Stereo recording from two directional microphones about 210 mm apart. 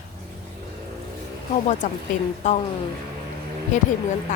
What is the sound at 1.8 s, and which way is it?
Speech, 35° left (ahead or behind).